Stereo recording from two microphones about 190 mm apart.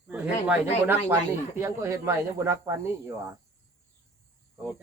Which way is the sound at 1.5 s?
15° right (ahead or behind).